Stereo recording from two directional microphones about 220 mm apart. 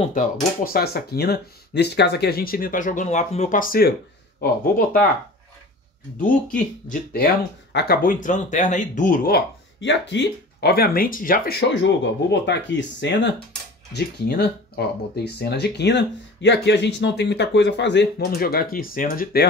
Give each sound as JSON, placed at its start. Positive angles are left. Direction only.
{"t": 0.0, "sound": "speech", "side_deg": 35}
{"t": 6.2, "sound": "speech", "side_deg": 40}